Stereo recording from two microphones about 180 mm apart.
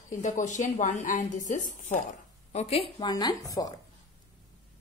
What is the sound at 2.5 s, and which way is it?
A woman's voice, 35° left (ahead or behind).